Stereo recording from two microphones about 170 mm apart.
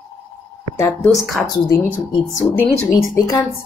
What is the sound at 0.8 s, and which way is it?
A woman's voice, 10° left (ahead or behind).